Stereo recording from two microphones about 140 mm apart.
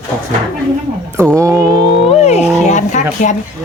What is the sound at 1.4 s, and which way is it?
Music, 20° right (ahead or behind).